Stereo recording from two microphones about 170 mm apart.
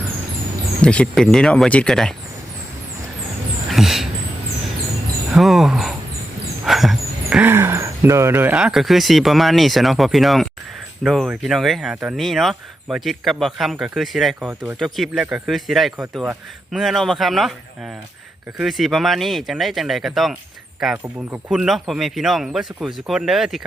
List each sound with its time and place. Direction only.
0.8 s speech: 5° left (ahead or behind)
3.7 s a sound: centre (ahead or behind)
5.3 s speech: centre (ahead or behind)
18.5 s speech: centre (ahead or behind)